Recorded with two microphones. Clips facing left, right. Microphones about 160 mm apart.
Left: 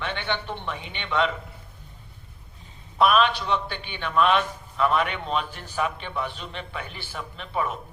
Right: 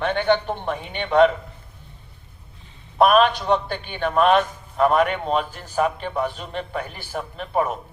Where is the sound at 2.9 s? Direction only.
45° right (ahead or behind).